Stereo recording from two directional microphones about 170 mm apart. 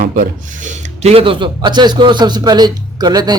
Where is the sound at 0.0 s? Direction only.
50° right (ahead or behind).